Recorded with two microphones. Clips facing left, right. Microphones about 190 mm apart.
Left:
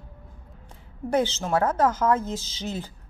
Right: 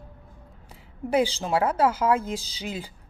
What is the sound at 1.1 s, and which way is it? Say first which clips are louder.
A woman's voice: even; 10° right (ahead or behind).